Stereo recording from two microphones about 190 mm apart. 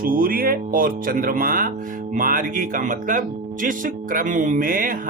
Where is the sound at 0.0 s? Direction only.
50° right (ahead or behind).